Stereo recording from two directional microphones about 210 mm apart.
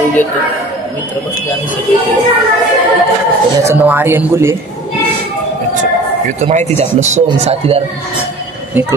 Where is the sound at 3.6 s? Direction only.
10° right (ahead or behind).